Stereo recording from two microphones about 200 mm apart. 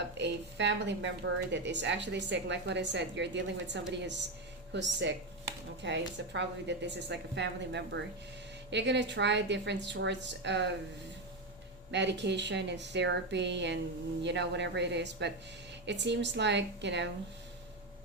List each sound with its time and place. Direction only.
0.2 s a woman's voice: 60° right (ahead or behind)
11.9 s a woman's voice: 60° right (ahead or behind)